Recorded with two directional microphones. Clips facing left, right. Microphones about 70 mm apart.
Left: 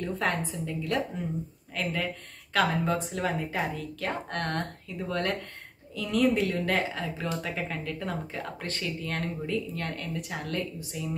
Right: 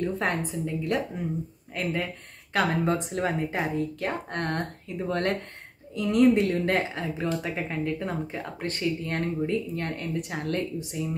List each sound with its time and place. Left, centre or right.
0.0 s speech: right